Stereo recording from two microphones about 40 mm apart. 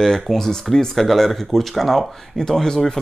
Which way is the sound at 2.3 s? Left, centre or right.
Centre.